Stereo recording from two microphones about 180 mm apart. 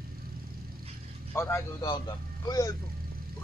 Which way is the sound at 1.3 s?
15° left (ahead or behind).